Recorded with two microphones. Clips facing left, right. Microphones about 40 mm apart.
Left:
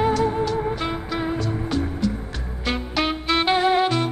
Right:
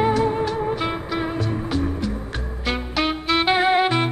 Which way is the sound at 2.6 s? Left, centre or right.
Centre.